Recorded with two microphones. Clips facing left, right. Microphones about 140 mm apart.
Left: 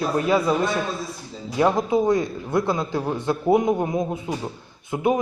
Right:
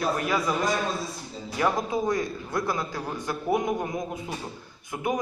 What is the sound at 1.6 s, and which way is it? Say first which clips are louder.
A man's voice: left 6 dB; 25° left (ahead or behind).